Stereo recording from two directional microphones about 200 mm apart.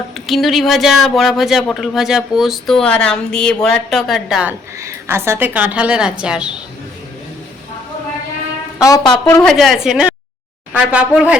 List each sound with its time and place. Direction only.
0.3 s speech: centre (ahead or behind)
8.8 s speech: 15° left (ahead or behind)
9.4 s speech: centre (ahead or behind)